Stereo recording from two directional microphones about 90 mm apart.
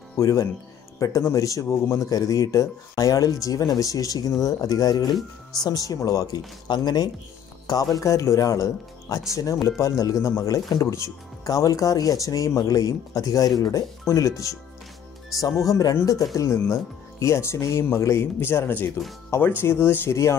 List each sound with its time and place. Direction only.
0.2 s speech: 40° left (ahead or behind)
5.1 s speech: 5° left (ahead or behind)
5.7 s speech: 40° left (ahead or behind)
7.9 s speech: 35° left (ahead or behind)